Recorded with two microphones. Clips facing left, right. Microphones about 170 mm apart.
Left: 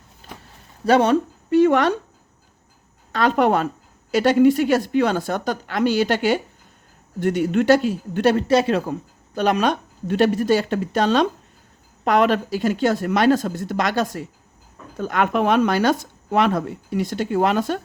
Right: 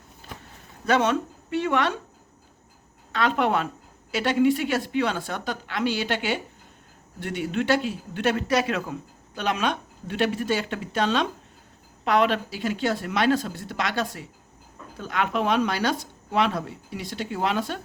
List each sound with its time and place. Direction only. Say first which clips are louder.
0.9 s speech: left 6 dB; 35° left (ahead or behind)
3.1 s speech: left 5 dB; 40° left (ahead or behind)